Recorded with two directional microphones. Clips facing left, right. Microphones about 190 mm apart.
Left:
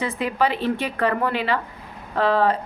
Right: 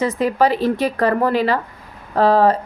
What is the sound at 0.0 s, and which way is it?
A woman's voice, 40° right (ahead or behind).